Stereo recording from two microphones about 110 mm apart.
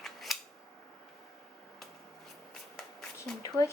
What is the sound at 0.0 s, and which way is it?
Scissors, centre (ahead or behind).